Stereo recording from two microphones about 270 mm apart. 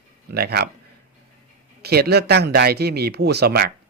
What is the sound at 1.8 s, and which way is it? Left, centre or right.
Speech, right.